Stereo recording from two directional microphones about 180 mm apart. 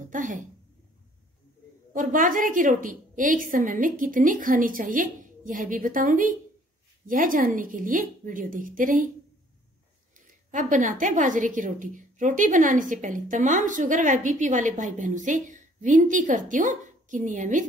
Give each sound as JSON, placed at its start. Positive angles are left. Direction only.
{"t": 0.0, "sound": "a sound", "side_deg": -45}
{"t": 2.0, "sound": "a woman's voice", "side_deg": -45}
{"t": 10.5, "sound": "a woman's voice", "side_deg": -45}